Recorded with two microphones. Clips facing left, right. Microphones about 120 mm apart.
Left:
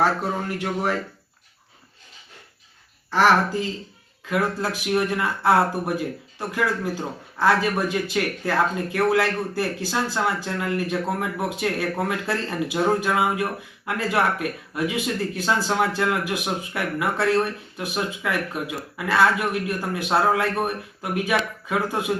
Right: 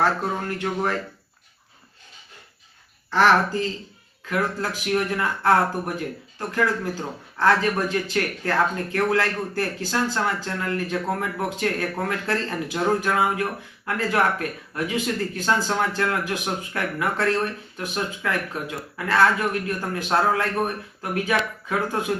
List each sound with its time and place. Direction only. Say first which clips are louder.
0.0 s speech: left 1 dB; 10° left (ahead or behind)
3.1 s speech: even; 10° left (ahead or behind)
7.3 s speech: even; 10° left (ahead or behind)